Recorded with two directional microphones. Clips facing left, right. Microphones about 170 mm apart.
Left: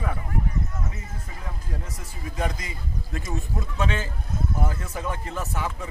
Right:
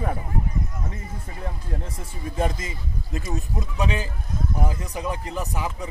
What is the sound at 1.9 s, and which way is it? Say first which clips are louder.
Speech: right 4 dB; 25° right (ahead or behind).